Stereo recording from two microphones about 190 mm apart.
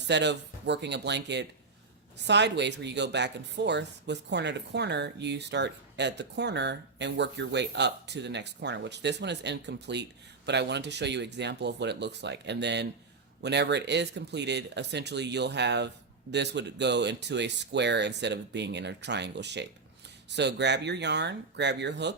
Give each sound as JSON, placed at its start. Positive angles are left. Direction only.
{"t": 0.1, "sound": "speech", "side_deg": -65}